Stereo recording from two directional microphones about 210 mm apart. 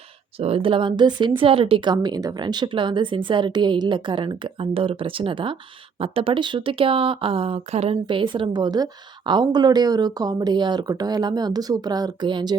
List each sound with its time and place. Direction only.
0.3 s speech: 25° right (ahead or behind)